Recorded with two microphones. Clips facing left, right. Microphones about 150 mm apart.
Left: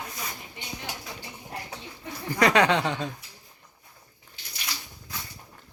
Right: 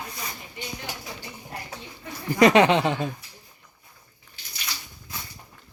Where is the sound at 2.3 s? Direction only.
15° right (ahead or behind).